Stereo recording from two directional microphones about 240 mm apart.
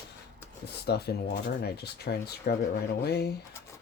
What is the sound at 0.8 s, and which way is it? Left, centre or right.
Speech, left.